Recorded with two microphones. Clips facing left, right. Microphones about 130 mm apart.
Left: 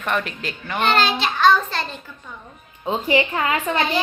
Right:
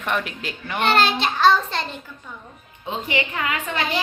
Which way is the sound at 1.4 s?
25° right (ahead or behind).